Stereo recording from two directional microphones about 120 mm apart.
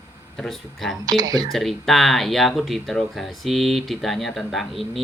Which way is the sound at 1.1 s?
30° right (ahead or behind).